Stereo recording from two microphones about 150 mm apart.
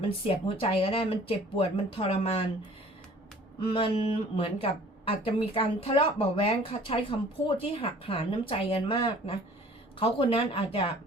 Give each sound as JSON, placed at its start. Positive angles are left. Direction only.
{"t": 0.0, "sound": "a woman's voice", "side_deg": 40}
{"t": 3.6, "sound": "a woman's voice", "side_deg": 35}